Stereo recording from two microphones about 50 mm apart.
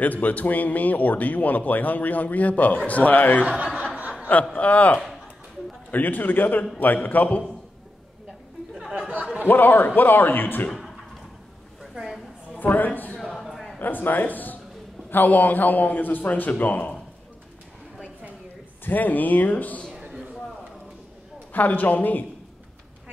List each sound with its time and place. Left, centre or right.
0.0 s a man's voice: left
3.9 s chuckle: right
4.6 s a man's voice: left
8.9 s a sound: right
9.4 s a man's voice: left
10.7 s a sound: centre
12.5 s a man's voice: left
13.3 s a sound: centre
13.7 s a man's voice: left
18.9 s a man's voice: left
19.9 s a sound: centre
21.5 s a man's voice: left